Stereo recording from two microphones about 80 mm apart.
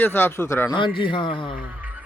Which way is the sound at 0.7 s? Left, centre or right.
Left.